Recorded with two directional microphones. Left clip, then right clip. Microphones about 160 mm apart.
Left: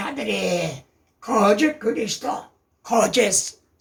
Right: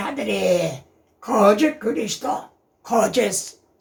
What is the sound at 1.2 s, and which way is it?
A woman's voice, 15° left (ahead or behind).